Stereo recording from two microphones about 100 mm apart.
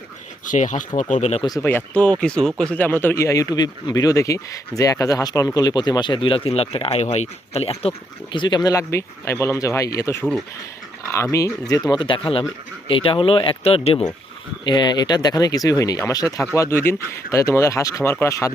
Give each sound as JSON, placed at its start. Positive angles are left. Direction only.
{"t": 0.9, "sound": "speech", "side_deg": 70}
{"t": 1.6, "sound": "speech", "side_deg": 15}
{"t": 2.7, "sound": "speech", "side_deg": 20}
{"t": 8.3, "sound": "speech", "side_deg": 50}
{"t": 8.7, "sound": "speech", "side_deg": 30}
{"t": 11.7, "sound": "speech", "side_deg": 40}
{"t": 14.6, "sound": "speech", "side_deg": 50}
{"t": 16.6, "sound": "speech", "side_deg": 25}